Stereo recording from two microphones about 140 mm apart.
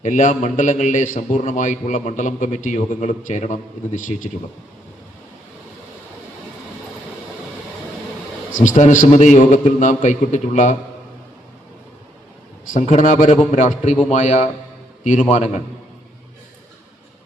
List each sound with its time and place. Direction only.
0.0 s a man's voice: 65° left (ahead or behind)
8.5 s a man's voice: 65° left (ahead or behind)
12.7 s a man's voice: 65° left (ahead or behind)